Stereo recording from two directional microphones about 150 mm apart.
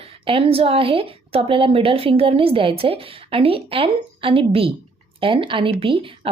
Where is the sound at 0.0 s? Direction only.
35° right (ahead or behind).